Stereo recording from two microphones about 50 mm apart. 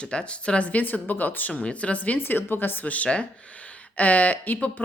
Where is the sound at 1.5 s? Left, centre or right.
Left.